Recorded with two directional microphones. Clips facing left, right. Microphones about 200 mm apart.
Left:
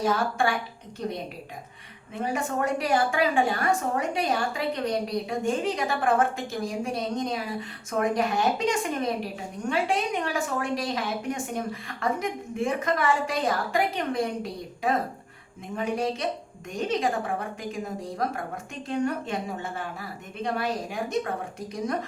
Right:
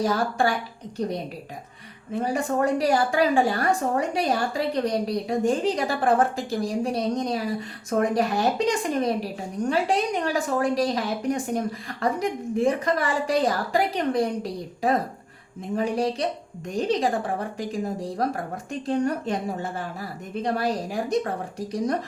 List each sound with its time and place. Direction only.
0.0 s a woman's voice: 35° right (ahead or behind)
2.1 s a woman's voice: 35° right (ahead or behind)